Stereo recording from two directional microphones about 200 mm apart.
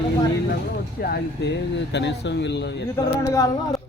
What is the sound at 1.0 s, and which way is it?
Speech, 50° left (ahead or behind).